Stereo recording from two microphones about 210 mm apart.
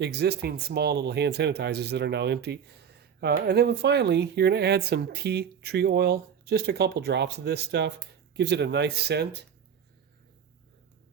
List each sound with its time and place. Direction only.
0.0 s speech: 50° right (ahead or behind)